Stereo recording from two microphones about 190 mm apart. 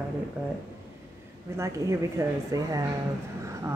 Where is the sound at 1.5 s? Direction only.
15° right (ahead or behind).